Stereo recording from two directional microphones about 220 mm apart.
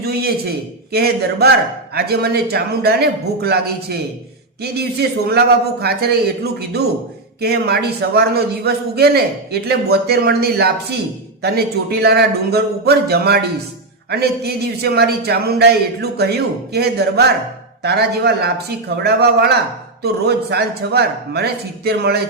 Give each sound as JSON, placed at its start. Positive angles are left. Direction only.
{"t": 0.0, "sound": "a man's voice", "side_deg": -45}